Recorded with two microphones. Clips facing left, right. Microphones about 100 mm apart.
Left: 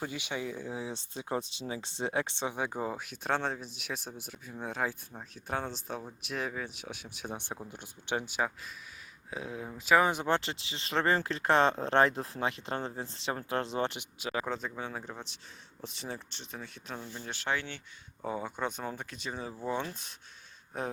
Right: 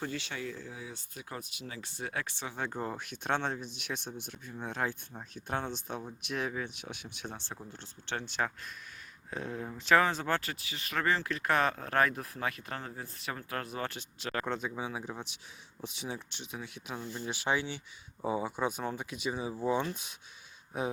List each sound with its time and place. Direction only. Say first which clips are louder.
0.0 s speech: left 1 dB; 15° left (ahead or behind)
7.3 s speech: left 4 dB; 15° left (ahead or behind); by 20.9 s 5° right (ahead or behind)